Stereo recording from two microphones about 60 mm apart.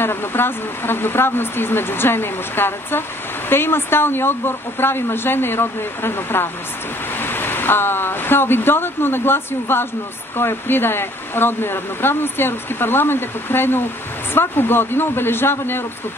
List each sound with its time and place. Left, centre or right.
0.0 s speech: left